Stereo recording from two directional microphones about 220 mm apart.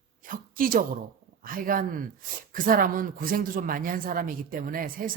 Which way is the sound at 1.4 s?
40° right (ahead or behind).